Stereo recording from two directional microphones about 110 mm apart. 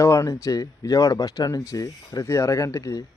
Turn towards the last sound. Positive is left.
turn(degrees=30)  # may be behind; listen again after turning